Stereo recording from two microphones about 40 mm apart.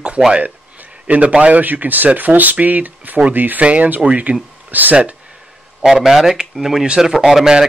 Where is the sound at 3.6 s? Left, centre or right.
Right.